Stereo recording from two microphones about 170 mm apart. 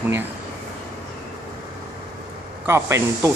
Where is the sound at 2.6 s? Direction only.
15° right (ahead or behind).